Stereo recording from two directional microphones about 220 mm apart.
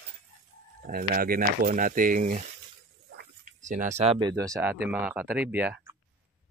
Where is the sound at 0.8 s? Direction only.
40° right (ahead or behind).